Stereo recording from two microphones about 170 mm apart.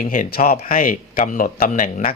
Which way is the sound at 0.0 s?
55° left (ahead or behind).